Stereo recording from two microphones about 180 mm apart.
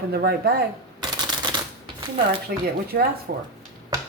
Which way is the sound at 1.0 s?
25° right (ahead or behind).